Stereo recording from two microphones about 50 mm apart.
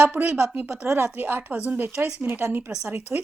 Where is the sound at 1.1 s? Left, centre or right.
Right.